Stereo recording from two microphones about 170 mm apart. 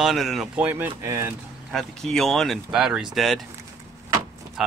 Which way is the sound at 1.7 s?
Centre (ahead or behind).